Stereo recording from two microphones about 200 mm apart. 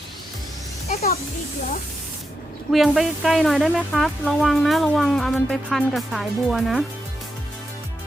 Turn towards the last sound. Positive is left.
turn(degrees=0)  # may be behind; listen again after turning